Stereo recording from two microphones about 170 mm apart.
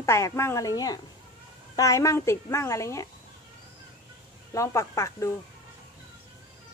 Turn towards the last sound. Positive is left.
turn(degrees=15)  # may be behind; listen again after turning